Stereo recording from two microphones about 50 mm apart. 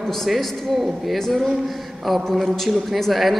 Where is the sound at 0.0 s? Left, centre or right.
Centre.